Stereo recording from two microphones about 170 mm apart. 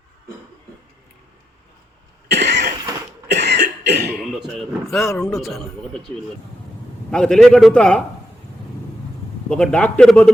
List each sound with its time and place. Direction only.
2.3 s cough: 90° right
4.5 s a man's voice: centre (ahead or behind)
7.1 s a man's voice: 5° left (ahead or behind)
9.5 s a man's voice: 5° left (ahead or behind)